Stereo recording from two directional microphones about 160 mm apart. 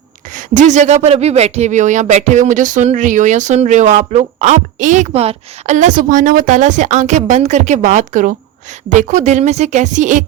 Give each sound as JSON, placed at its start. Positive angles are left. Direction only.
{"t": 0.3, "sound": "speech", "side_deg": -50}